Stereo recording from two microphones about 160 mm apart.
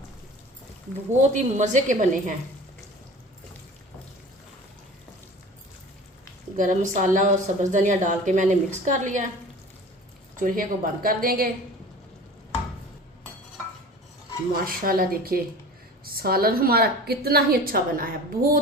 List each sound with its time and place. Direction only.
1.2 s a woman's voice: 50° right (ahead or behind)
6.6 s a woman's voice: 50° right (ahead or behind)
10.3 s a woman's voice: 60° right (ahead or behind)
14.5 s a woman's voice: 65° right (ahead or behind)